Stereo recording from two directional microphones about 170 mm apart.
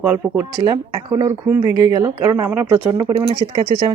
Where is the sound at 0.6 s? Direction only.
20° right (ahead or behind).